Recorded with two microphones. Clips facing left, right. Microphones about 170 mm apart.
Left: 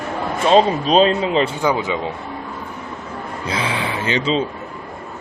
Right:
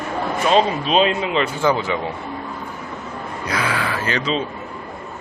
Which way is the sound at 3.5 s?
25° left (ahead or behind).